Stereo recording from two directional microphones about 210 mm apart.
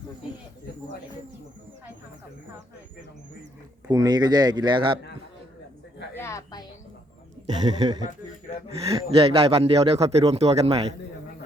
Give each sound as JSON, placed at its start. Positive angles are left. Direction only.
{"t": 3.8, "sound": "a man's voice", "side_deg": -20}
{"t": 6.1, "sound": "a sound", "side_deg": 15}
{"t": 7.4, "sound": "a man's voice", "side_deg": -20}